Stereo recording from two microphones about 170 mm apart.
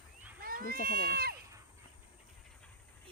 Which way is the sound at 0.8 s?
65° right (ahead or behind).